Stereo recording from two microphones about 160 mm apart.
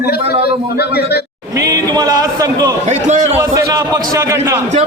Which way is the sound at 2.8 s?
45° right (ahead or behind).